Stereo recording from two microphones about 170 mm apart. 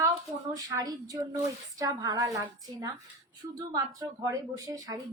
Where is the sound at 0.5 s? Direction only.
20° right (ahead or behind).